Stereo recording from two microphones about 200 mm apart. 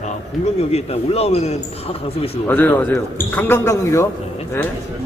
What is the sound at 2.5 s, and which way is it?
Speech, 10° left (ahead or behind).